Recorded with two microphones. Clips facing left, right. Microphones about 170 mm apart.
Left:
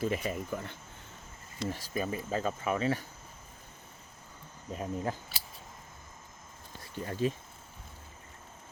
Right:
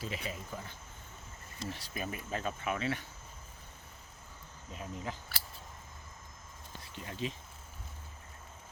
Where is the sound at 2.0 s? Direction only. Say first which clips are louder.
Left 6 dB; 30° left (ahead or behind).